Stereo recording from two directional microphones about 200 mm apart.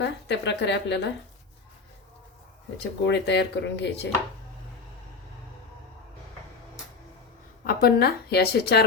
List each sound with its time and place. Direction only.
0.0 s a woman's voice: 60° left (ahead or behind)
3.1 s a woman's voice: 60° left (ahead or behind)
7.6 s a woman's voice: 50° left (ahead or behind)